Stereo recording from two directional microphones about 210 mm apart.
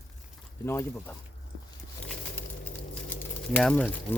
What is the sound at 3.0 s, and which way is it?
Pigeon, 5° left (ahead or behind).